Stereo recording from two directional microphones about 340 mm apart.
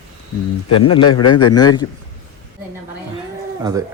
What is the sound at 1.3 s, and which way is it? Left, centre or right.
Speech, centre.